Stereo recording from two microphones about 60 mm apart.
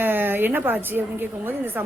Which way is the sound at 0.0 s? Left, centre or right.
Right.